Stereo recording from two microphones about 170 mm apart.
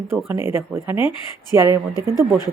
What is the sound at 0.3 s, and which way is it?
Speech, 15° right (ahead or behind).